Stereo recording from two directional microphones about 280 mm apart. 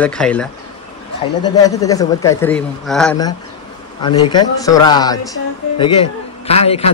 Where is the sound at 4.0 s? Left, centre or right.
Centre.